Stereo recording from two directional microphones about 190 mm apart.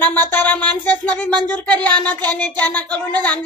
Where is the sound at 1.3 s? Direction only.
20° right (ahead or behind).